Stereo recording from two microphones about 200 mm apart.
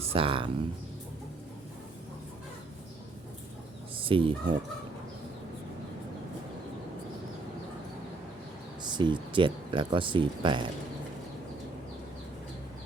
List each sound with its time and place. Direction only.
0.1 s speech: 25° right (ahead or behind)
3.9 s speech: 25° right (ahead or behind)
8.8 s speech: 20° right (ahead or behind)